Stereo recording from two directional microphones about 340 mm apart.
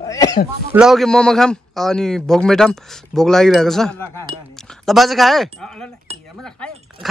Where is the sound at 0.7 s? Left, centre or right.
Centre.